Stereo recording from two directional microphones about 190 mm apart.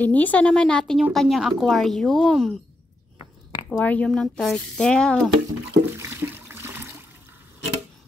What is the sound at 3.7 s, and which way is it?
A woman's voice, 10° left (ahead or behind).